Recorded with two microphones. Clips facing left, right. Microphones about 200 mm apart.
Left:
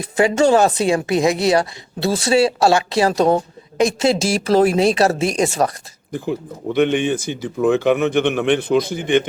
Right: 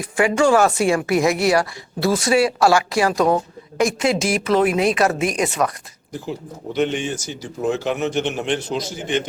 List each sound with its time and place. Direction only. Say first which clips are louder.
0.0 s speech: left 2 dB; 25° left (ahead or behind)
6.1 s speech: left 5 dB; 55° left (ahead or behind)